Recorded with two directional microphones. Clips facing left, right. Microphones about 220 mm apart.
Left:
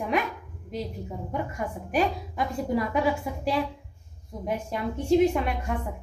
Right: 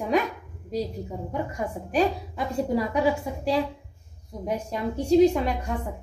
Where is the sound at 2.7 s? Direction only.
30° right (ahead or behind).